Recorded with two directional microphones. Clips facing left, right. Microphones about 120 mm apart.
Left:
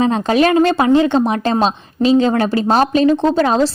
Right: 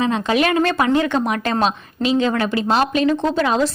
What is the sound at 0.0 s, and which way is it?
A woman's voice, 35° left (ahead or behind).